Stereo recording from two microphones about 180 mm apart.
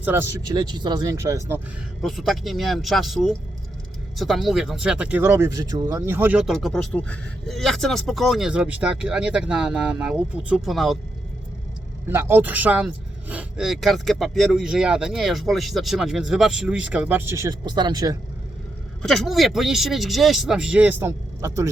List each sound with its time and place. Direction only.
0.0 s speech: 15° right (ahead or behind)
0.5 s speech: 25° right (ahead or behind)
2.0 s speech: centre (ahead or behind)
12.0 s speech: 15° right (ahead or behind)
19.0 s speech: centre (ahead or behind); by 21.7 s 15° right (ahead or behind)